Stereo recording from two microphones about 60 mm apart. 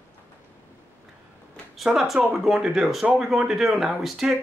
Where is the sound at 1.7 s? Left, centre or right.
Centre.